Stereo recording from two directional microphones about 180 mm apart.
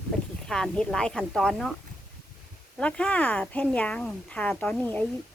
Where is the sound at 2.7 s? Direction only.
5° left (ahead or behind).